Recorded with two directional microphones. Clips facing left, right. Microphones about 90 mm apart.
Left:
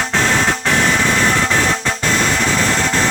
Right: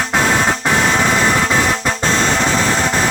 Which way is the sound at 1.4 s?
15° right (ahead or behind).